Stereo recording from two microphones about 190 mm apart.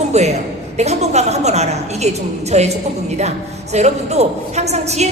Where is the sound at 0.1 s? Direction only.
35° right (ahead or behind).